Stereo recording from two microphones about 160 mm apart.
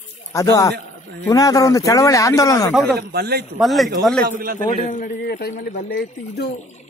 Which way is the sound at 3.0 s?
80° right.